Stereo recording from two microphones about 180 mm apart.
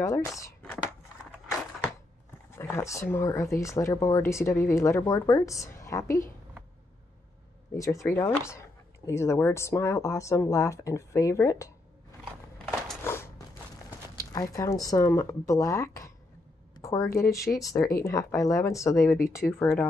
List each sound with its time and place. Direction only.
0.0 s speech: 15° left (ahead or behind)
0.4 s a sound: 15° left (ahead or behind)
2.5 s speech: 15° left (ahead or behind)
7.7 s speech: 15° left (ahead or behind)
13.0 s a sound: 15° left (ahead or behind)
14.1 s speech: 20° left (ahead or behind)